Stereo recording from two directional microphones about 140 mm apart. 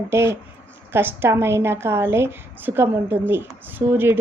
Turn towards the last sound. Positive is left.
turn(degrees=-15)  # may be behind; listen again after turning